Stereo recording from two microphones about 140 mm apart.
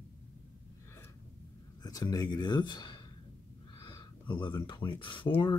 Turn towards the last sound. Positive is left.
turn(degrees=35)  # may be behind; listen again after turning